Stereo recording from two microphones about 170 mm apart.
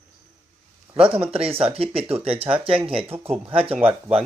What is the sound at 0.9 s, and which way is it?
Speech, 35° right (ahead or behind).